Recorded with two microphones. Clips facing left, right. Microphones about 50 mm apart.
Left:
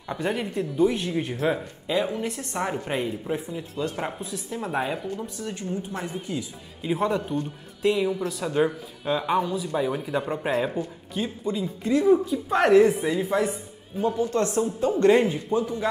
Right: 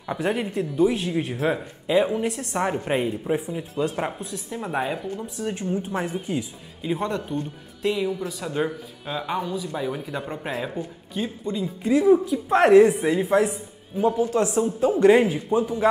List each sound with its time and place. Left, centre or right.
0.1 s a man's voice: centre
5.4 s speech: centre
6.8 s a man's voice: centre